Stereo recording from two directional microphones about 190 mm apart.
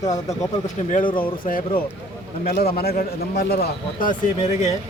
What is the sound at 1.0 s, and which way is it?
Speech, 25° left (ahead or behind).